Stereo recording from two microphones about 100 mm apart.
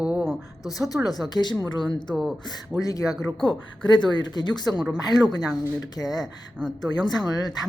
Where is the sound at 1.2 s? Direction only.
45° left (ahead or behind).